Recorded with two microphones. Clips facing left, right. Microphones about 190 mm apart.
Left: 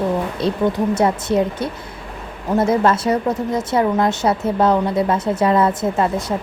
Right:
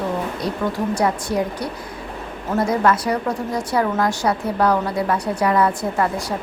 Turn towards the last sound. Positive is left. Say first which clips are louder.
# left 3 dB
turn(degrees=20)  # may be behind; listen again after turning